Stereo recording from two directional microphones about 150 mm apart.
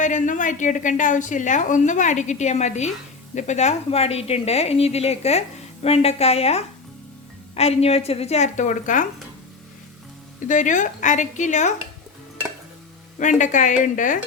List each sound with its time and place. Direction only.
0.0 s a woman's voice: 55° left (ahead or behind)
10.4 s a woman's voice: 55° left (ahead or behind)
13.1 s a woman's voice: 55° left (ahead or behind)